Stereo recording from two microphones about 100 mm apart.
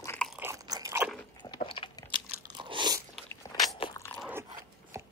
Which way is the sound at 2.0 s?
55° right (ahead or behind).